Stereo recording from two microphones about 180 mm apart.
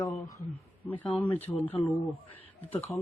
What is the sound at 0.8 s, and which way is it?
Speech, 10° left (ahead or behind).